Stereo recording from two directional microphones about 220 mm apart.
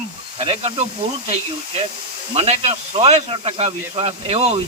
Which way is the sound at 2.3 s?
25° right (ahead or behind).